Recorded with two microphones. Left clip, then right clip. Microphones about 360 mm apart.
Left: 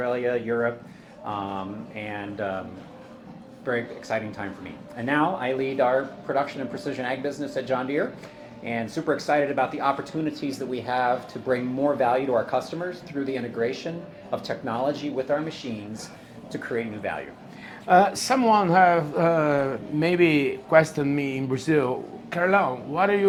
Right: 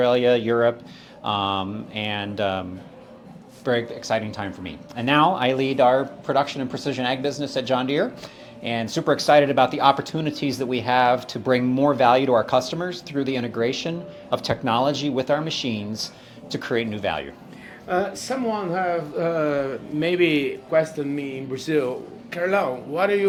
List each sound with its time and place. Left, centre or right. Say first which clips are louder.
0.0 s mantra: right 7 dB; right
3.6 s speech: right 5 dB; right
16.5 s speech: right 4 dB; right
17.8 s speech: left 6 dB; left